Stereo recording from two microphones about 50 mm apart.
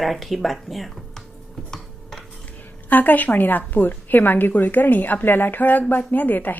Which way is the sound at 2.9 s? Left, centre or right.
Left.